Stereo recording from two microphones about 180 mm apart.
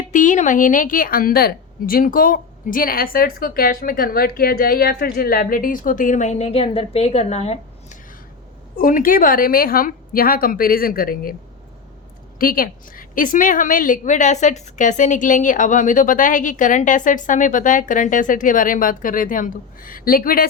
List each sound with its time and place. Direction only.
0.1 s a woman's voice: 45° left (ahead or behind)
8.8 s a woman's voice: 50° left (ahead or behind)
12.4 s a woman's voice: 50° left (ahead or behind)